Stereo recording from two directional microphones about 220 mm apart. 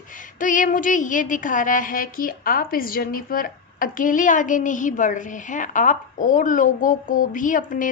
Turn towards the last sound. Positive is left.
turn(degrees=35)  # may be behind; listen again after turning